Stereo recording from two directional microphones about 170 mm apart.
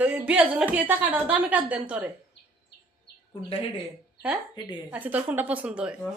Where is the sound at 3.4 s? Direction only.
30° left (ahead or behind).